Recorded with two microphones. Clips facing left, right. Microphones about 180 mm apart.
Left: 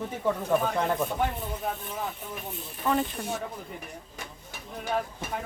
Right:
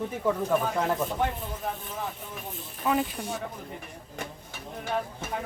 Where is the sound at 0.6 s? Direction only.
Centre (ahead or behind).